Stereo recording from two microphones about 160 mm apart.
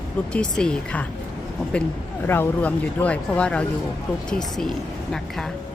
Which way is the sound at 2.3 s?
10° left (ahead or behind).